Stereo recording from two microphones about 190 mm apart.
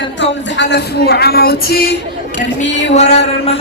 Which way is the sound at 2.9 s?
35° left (ahead or behind).